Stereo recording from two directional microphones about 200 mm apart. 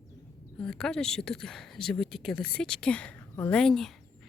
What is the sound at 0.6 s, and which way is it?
Speech, 5° left (ahead or behind).